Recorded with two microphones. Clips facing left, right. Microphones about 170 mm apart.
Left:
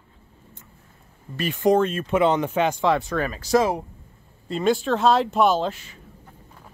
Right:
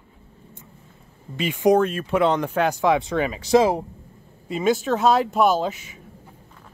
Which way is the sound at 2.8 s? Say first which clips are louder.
Right 2 dB; 15° right (ahead or behind).